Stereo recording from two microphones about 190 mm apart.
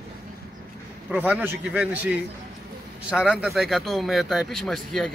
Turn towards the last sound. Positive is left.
turn(degrees=0)  # may be behind; listen again after turning